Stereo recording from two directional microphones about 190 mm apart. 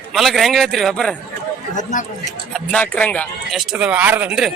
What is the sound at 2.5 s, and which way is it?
Speech, 5° left (ahead or behind).